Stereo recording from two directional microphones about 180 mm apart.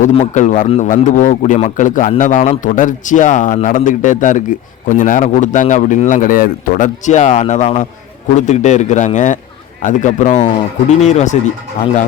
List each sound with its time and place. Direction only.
0.0 s a man's voice: 40° left (ahead or behind)